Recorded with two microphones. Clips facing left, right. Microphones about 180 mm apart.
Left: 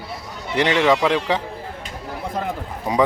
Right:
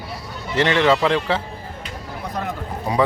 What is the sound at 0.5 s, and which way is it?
Speech, 15° left (ahead or behind).